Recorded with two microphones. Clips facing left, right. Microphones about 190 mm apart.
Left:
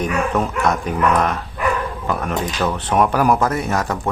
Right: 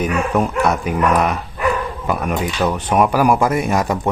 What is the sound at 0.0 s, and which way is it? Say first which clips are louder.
Speech: right 2 dB; 10° right (ahead or behind).